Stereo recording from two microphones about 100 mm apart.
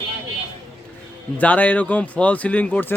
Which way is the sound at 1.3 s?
15° left (ahead or behind).